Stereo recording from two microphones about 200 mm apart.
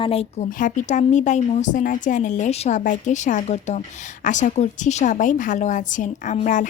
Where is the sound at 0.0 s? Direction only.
30° left (ahead or behind).